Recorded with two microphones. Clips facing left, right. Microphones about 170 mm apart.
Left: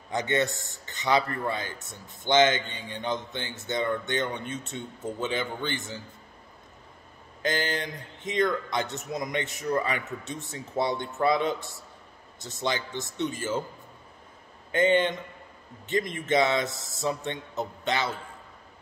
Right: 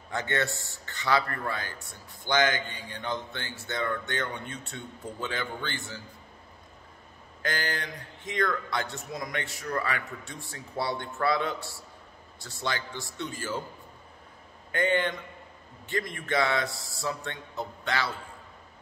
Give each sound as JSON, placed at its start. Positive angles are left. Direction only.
{"t": 0.1, "sound": "a man's voice", "side_deg": 20}
{"t": 7.4, "sound": "a man's voice", "side_deg": 20}
{"t": 14.7, "sound": "a man's voice", "side_deg": 20}